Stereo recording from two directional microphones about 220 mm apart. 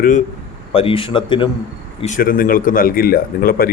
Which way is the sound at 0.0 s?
35° left (ahead or behind).